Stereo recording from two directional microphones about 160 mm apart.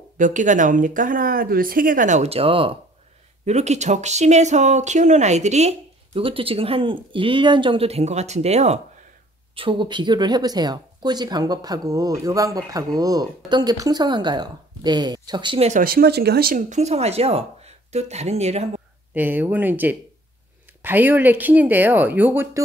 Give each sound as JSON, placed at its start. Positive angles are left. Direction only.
{"t": 0.2, "sound": "speech", "side_deg": -50}
{"t": 3.4, "sound": "speech", "side_deg": -45}
{"t": 9.6, "sound": "speech", "side_deg": -30}
{"t": 15.7, "sound": "speech", "side_deg": -65}
{"t": 19.1, "sound": "speech", "side_deg": -10}